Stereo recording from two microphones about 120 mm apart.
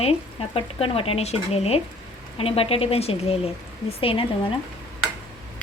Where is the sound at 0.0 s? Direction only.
55° left (ahead or behind).